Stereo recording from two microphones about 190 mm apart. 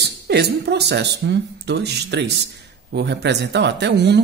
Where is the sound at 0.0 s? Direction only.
60° right (ahead or behind).